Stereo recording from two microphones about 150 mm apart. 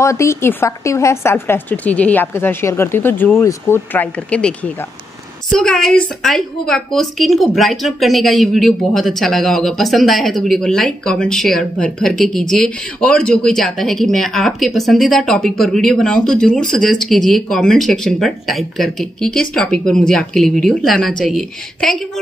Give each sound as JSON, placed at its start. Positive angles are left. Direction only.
{"t": 0.0, "sound": "a woman's voice", "side_deg": 20}